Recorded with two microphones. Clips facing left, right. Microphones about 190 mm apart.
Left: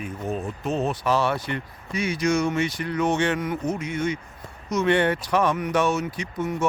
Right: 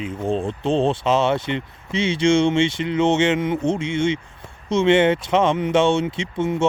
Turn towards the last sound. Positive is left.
turn(degrees=-25)  # may be behind; listen again after turning